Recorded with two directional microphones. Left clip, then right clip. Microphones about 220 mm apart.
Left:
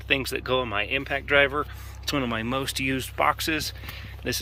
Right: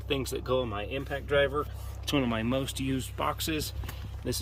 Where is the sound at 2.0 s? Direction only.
10° right (ahead or behind).